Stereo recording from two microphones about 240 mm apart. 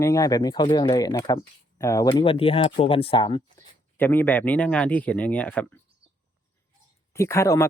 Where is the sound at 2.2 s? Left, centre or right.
Left.